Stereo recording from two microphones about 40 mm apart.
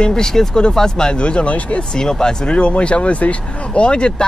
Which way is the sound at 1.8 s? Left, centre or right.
Centre.